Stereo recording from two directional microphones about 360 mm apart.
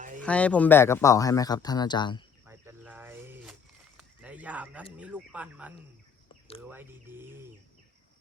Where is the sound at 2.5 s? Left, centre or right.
Centre.